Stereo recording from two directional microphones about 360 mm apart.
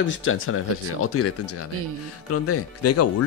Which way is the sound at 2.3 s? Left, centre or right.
Left.